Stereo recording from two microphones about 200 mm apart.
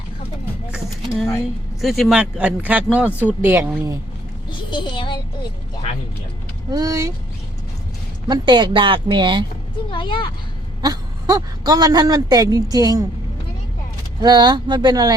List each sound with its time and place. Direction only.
1.8 s a woman's voice: centre (ahead or behind)
4.4 s a child's voice: 25° left (ahead or behind)
6.7 s a woman's voice: 20° right (ahead or behind)
8.3 s speech: 20° right (ahead or behind)
9.9 s a woman's voice: 25° left (ahead or behind)
10.8 s speech: 20° right (ahead or behind)
14.2 s speech: 20° right (ahead or behind)